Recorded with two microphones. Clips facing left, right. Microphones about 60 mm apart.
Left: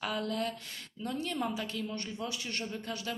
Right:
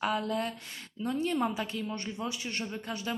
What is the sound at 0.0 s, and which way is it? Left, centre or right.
Speech, centre.